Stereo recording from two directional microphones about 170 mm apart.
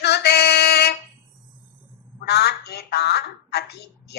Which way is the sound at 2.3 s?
70° left (ahead or behind).